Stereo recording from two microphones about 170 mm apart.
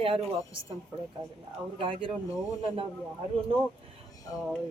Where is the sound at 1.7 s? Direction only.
30° right (ahead or behind).